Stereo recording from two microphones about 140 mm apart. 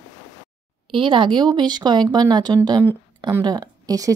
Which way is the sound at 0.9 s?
35° right (ahead or behind).